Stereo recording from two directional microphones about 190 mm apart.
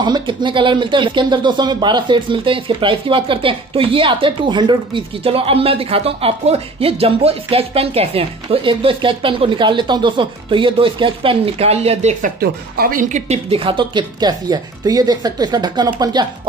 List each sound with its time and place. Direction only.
0.0 s speech: 25° right (ahead or behind)
12.4 s speech: 50° right (ahead or behind); by 16.3 s 20° right (ahead or behind)